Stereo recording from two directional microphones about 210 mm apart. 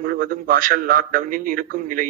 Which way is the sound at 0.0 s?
45° right (ahead or behind).